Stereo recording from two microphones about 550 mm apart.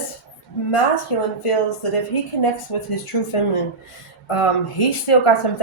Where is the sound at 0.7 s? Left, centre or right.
Left.